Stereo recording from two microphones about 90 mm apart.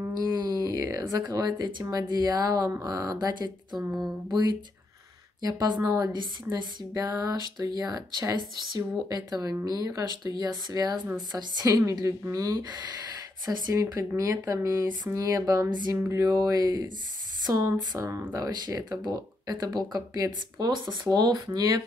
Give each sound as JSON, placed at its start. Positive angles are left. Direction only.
{"t": 0.1, "sound": "a sound", "side_deg": -50}
{"t": 1.2, "sound": "speech", "side_deg": -50}
{"t": 17.9, "sound": "speech", "side_deg": -35}